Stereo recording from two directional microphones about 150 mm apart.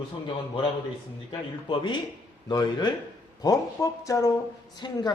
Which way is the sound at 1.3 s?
30° left (ahead or behind).